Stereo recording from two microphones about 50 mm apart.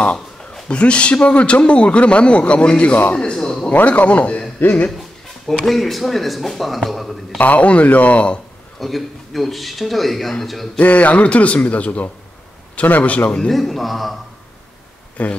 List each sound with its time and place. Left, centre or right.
0.7 s a man's voice: left
3.7 s a man's voice: left
5.5 s a man's voice: centre
7.3 s a man's voice: left
8.7 s a man's voice: centre
10.8 s a man's voice: left
13.5 s a man's voice: centre
15.2 s a man's voice: left